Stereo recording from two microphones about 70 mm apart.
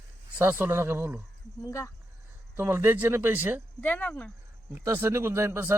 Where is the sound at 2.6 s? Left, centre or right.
Right.